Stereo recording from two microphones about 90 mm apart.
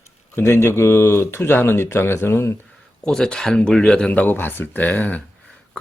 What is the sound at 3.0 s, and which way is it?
Speech, 5° left (ahead or behind).